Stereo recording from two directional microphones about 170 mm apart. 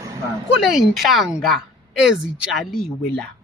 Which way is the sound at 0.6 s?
Centre (ahead or behind).